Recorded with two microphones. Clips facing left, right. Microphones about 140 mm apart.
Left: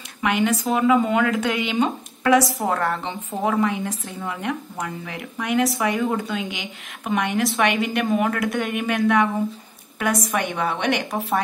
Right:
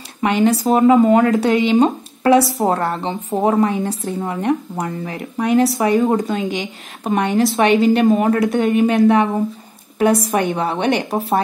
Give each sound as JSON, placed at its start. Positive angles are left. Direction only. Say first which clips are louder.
{"t": 0.2, "sound": "speech", "louder": "right 6 dB", "side_deg": -35}